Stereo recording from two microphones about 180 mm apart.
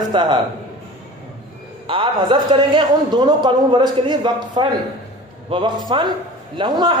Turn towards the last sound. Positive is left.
turn(degrees=-25)  # may be behind; listen again after turning